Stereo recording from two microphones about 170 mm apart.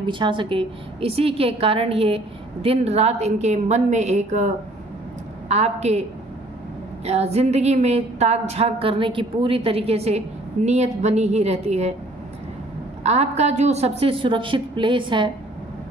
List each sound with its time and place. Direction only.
0.0 s a woman's voice: 30° right (ahead or behind); by 4.5 s 45° right (ahead or behind)
5.5 s a woman's voice: 40° right (ahead or behind)
7.1 s a woman's voice: 40° right (ahead or behind)
13.0 s a woman's voice: 40° right (ahead or behind)